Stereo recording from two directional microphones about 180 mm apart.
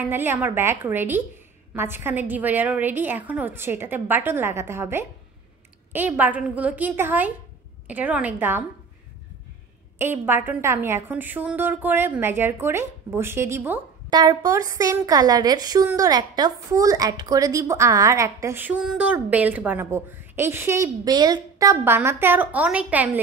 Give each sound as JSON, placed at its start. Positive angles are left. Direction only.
{"t": 0.0, "sound": "a woman's voice", "side_deg": -10}
{"t": 9.9, "sound": "a woman's voice", "side_deg": -10}